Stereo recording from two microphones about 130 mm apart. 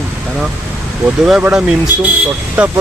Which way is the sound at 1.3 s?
10° right (ahead or behind).